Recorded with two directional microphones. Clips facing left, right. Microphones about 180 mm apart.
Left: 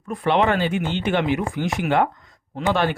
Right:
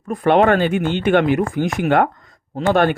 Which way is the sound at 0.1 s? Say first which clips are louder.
Right 5 dB; 50° right (ahead or behind).